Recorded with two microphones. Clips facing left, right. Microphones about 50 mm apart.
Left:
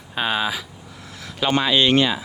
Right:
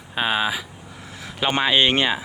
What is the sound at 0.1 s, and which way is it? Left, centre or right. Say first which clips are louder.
Speech: right 1 dB; centre.